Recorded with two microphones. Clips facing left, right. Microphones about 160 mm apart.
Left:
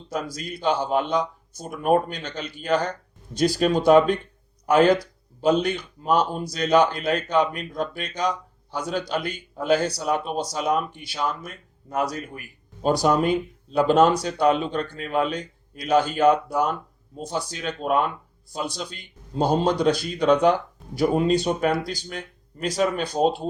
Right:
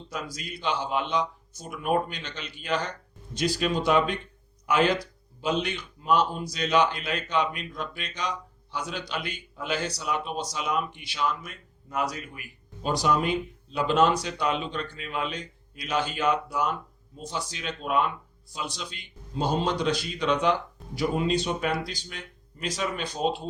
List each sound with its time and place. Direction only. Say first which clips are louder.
0.1 s speech: left 7 dB; 40° left (ahead or behind)